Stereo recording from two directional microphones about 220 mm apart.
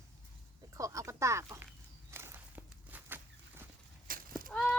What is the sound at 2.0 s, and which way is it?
Walk, 10° right (ahead or behind).